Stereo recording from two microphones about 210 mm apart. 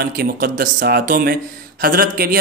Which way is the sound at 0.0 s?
45° right (ahead or behind).